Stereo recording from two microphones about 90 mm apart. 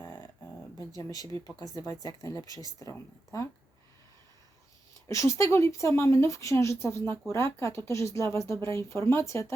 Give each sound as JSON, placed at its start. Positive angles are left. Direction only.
{"t": 0.8, "sound": "speech", "side_deg": 45}
{"t": 5.0, "sound": "speech", "side_deg": 35}